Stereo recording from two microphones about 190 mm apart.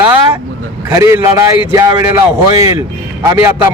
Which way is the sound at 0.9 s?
15° right (ahead or behind).